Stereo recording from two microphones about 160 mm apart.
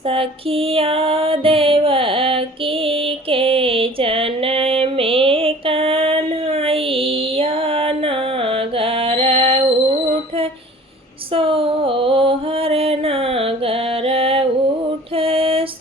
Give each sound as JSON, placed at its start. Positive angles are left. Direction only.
{"t": 0.1, "sound": "music", "side_deg": -35}
{"t": 11.3, "sound": "music", "side_deg": -35}